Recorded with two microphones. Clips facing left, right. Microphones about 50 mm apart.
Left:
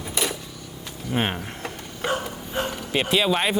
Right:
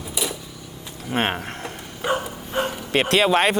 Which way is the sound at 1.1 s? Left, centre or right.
Right.